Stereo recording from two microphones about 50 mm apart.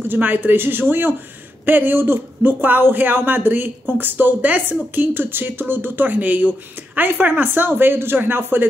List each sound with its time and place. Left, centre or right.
0.1 s speech: right